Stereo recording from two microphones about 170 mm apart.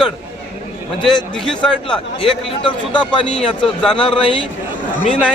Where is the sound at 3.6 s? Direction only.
5° left (ahead or behind).